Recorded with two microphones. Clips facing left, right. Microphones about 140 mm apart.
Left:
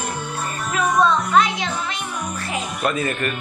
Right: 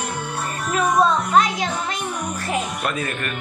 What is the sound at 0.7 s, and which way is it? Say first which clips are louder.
Speech: even; 40° right (ahead or behind).